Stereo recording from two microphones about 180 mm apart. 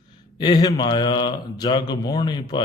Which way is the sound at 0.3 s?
25° left (ahead or behind).